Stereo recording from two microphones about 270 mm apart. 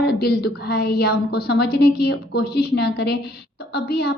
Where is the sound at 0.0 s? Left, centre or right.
Left.